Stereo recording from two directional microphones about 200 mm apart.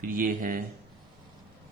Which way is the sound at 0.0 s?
45° right (ahead or behind).